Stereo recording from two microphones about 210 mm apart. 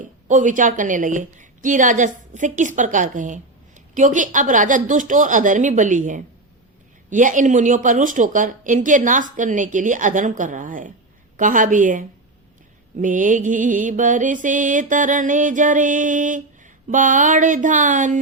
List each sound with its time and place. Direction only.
0.0 s a woman's voice: 35° right (ahead or behind)